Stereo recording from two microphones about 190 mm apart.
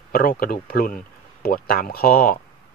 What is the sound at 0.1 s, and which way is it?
A man's voice, 50° left (ahead or behind).